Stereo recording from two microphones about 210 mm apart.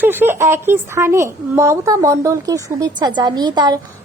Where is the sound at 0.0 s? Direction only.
10° right (ahead or behind).